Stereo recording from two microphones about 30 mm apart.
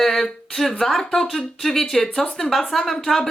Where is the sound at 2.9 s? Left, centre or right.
Centre.